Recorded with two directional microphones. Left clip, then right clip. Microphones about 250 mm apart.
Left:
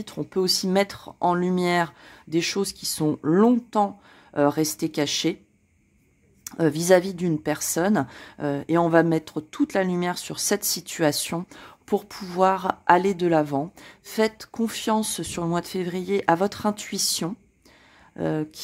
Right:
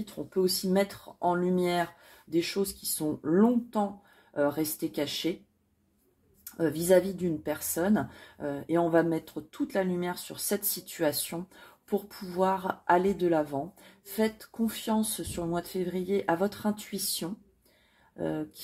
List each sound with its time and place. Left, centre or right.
0.0 s speech: left
6.4 s speech: left